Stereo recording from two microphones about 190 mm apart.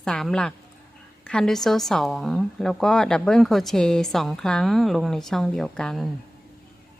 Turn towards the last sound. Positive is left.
turn(degrees=5)  # may be behind; listen again after turning